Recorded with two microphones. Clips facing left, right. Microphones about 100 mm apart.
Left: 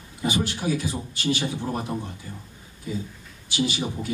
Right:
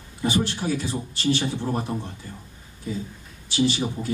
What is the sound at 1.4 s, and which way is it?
Speech, 5° left (ahead or behind).